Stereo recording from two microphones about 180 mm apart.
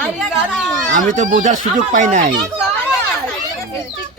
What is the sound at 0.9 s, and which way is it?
Speech, 45° right (ahead or behind).